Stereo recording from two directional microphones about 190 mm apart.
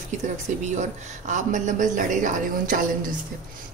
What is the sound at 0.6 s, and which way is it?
Speech, 40° right (ahead or behind).